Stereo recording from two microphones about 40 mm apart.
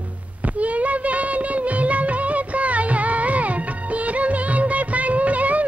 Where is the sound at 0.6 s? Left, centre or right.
Right.